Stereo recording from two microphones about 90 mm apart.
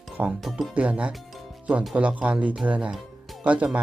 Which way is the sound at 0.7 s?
15° right (ahead or behind).